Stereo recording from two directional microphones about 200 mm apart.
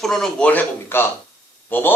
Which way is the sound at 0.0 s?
Centre (ahead or behind).